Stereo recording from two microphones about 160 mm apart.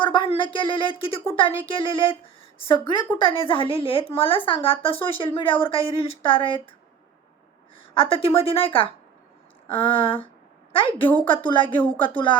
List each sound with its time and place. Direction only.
0.0 s speech: 30° left (ahead or behind)
7.9 s a woman's voice: 35° left (ahead or behind)